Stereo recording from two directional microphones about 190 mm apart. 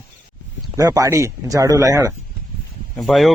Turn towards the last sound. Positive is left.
turn(degrees=0)  # may be behind; listen again after turning